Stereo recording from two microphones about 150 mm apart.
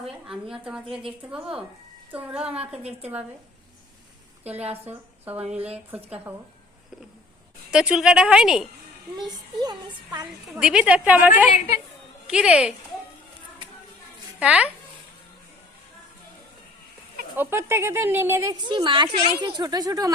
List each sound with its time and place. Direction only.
0.3 s a woman's voice: 5° right (ahead or behind)
4.5 s a woman's voice: 45° right (ahead or behind)
4.9 s speech: 10° right (ahead or behind)
7.7 s a woman's voice: 5° right (ahead or behind)
9.1 s a woman's voice: 30° right (ahead or behind)
10.5 s speech: 5° right (ahead or behind)
12.3 s a woman's voice: 5° right (ahead or behind)
14.3 s speech: 10° right (ahead or behind)
17.3 s speech: 15° right (ahead or behind)
18.5 s a woman's voice: 30° right (ahead or behind)